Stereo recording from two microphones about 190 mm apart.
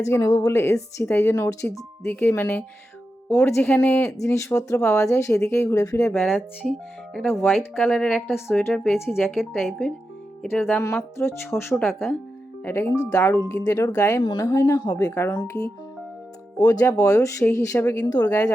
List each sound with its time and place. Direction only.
0.0 s speech: 15° left (ahead or behind); by 9.0 s centre (ahead or behind)
9.0 s speech: 10° left (ahead or behind)
9.4 s speech: centre (ahead or behind)
11.7 s speech: centre (ahead or behind)
12.6 s speech: 15° left (ahead or behind)